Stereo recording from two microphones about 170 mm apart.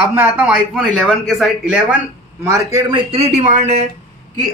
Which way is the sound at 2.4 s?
20° right (ahead or behind).